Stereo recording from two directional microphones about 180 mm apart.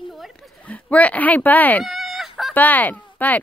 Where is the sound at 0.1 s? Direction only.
Centre (ahead or behind).